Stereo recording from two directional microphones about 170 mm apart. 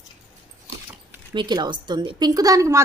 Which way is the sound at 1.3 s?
25° right (ahead or behind).